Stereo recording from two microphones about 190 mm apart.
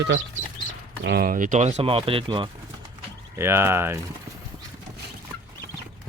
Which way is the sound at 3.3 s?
15° right (ahead or behind).